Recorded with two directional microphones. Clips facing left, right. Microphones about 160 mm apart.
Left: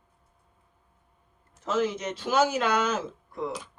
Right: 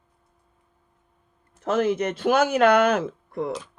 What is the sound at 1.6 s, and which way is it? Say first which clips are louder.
Speech: right 5 dB; 55° right (ahead or behind).